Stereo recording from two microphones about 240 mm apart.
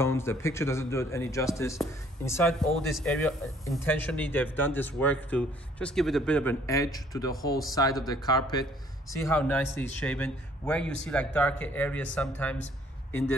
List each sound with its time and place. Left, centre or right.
0.0 s a man's voice: centre